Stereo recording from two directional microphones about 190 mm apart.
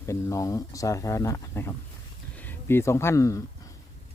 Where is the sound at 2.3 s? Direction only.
10° left (ahead or behind).